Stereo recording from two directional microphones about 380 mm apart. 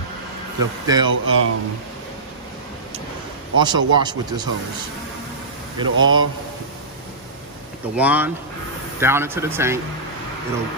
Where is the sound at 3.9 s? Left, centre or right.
Centre.